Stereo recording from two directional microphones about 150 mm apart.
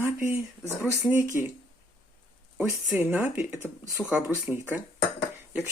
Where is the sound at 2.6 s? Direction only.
10° right (ahead or behind).